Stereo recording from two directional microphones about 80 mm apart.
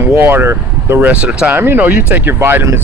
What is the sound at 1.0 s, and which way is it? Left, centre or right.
Speech, centre.